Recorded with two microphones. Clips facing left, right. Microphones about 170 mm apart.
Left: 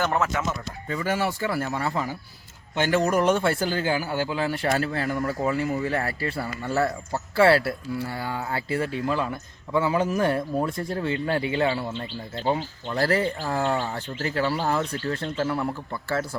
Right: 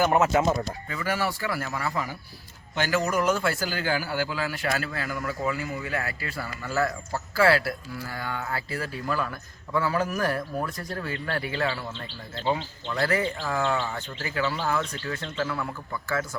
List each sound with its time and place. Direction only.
0.0 s speech: 15° right (ahead or behind)
0.3 s speech: 30° right (ahead or behind)
0.9 s a man's voice: 25° left (ahead or behind)